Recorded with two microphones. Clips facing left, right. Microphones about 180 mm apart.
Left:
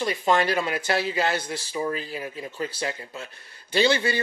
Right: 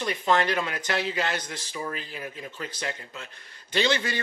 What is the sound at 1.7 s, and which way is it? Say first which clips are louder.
Speech: left 6 dB; 30° left (ahead or behind).